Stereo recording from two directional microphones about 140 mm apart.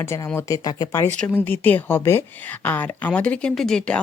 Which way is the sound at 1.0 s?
10° left (ahead or behind).